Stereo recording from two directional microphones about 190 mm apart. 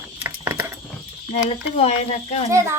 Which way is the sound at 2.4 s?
15° right (ahead or behind).